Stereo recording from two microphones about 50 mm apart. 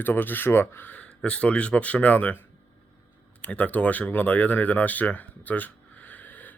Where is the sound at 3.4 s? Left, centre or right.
Left.